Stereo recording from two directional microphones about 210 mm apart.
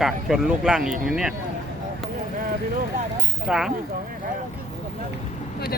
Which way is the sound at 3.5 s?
5° right (ahead or behind).